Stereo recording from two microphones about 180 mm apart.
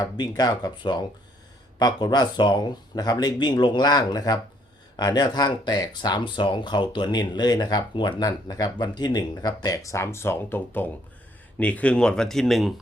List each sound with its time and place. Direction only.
0.0 s speech: 20° left (ahead or behind); by 12.8 s centre (ahead or behind)